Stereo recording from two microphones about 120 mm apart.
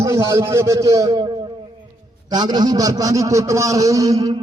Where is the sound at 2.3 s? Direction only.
35° right (ahead or behind).